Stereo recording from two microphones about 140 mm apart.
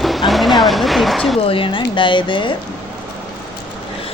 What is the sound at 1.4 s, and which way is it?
Speech, 40° left (ahead or behind).